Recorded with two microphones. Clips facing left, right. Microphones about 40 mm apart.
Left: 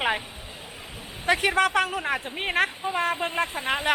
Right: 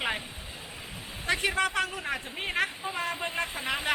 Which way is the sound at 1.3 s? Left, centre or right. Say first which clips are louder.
Left 6 dB; left.